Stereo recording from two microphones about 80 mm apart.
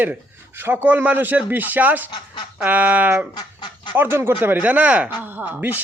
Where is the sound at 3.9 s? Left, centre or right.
Right.